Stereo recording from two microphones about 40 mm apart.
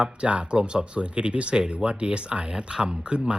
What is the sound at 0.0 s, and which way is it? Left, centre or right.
Speech, right.